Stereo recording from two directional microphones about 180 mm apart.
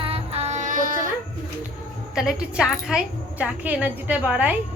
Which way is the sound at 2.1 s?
5° right (ahead or behind).